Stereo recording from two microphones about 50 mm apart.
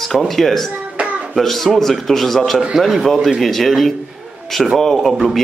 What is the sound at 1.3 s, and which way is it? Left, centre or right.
A man's voice, centre.